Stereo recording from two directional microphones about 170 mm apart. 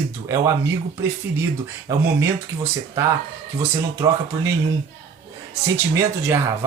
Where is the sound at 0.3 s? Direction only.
20° right (ahead or behind).